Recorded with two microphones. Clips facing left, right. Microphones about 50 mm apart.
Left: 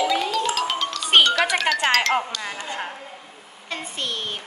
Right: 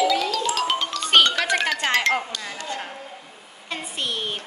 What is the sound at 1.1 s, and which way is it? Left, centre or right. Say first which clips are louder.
Music: left 1 dB; centre.